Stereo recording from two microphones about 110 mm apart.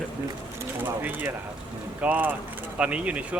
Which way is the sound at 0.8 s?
15° right (ahead or behind).